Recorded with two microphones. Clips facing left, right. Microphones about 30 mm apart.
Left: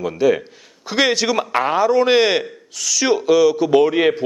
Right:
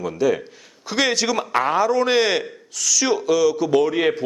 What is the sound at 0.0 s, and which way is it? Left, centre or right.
A man's voice, centre.